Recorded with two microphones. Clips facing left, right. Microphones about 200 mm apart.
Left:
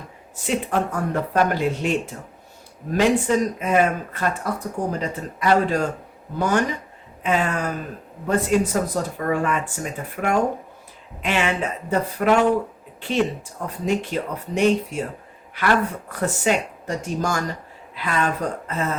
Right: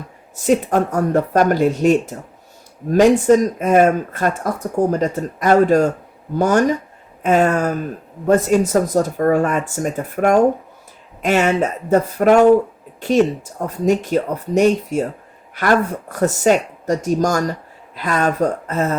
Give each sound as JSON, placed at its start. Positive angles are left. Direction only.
{"t": 0.4, "sound": "speech", "side_deg": -45}